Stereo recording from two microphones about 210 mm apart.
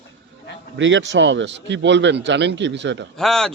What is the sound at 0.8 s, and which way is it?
Speech, 60° right (ahead or behind).